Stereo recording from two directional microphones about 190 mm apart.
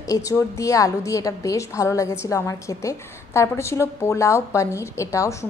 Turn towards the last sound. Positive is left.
turn(degrees=15)  # may be behind; listen again after turning